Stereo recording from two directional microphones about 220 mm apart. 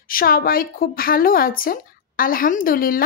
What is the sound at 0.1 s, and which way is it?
Speech, 40° left (ahead or behind).